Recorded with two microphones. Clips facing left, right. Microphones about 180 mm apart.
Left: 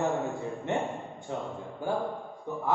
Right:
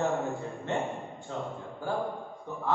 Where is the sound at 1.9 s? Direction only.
15° left (ahead or behind).